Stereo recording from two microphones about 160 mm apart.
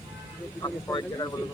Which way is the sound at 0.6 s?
25° left (ahead or behind).